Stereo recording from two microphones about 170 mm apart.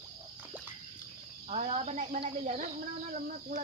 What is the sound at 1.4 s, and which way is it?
Speech, 40° right (ahead or behind).